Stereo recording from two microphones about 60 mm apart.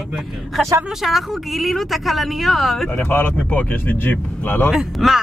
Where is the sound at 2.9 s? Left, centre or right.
Left.